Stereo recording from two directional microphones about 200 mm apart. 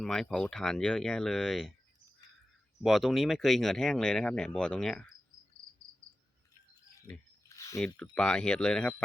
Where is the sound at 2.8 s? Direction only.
Centre (ahead or behind).